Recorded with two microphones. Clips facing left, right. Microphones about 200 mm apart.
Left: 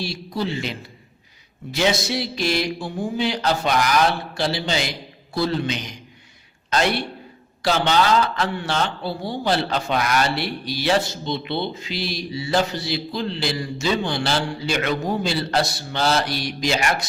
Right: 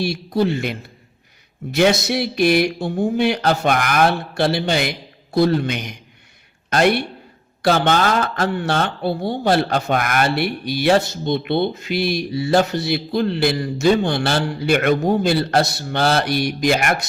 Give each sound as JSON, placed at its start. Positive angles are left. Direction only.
{"t": 0.0, "sound": "a man's voice", "side_deg": -60}